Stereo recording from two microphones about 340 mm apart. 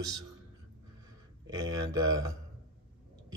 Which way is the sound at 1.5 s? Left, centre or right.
Centre.